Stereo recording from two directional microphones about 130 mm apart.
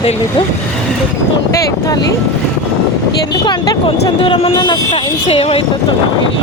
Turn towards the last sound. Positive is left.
turn(degrees=50)  # may be behind; listen again after turning